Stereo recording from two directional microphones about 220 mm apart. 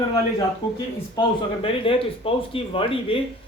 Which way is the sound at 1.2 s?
25° left (ahead or behind).